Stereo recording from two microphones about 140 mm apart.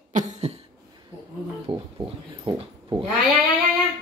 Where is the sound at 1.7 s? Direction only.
40° right (ahead or behind).